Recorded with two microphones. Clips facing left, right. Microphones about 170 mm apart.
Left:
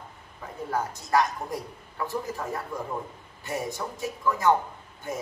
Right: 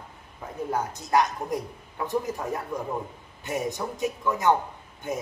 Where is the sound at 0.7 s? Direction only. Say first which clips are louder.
Even; 20° right (ahead or behind).